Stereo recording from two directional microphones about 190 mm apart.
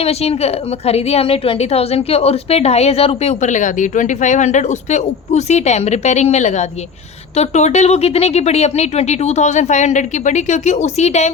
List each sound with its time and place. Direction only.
0.0 s a woman's voice: 30° left (ahead or behind)